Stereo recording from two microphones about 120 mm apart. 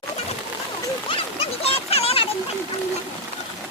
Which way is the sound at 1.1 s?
50° left (ahead or behind).